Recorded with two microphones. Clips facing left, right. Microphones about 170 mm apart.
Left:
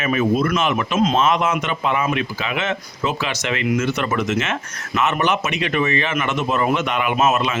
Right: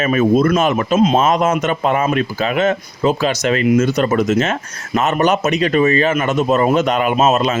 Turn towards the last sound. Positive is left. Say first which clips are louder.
# right 4 dB
turn(degrees=-40)  # may be behind; listen again after turning